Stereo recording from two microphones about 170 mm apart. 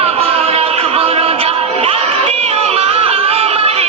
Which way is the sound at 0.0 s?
35° right (ahead or behind).